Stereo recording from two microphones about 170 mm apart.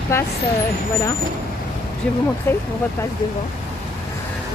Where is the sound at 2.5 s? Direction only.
15° left (ahead or behind).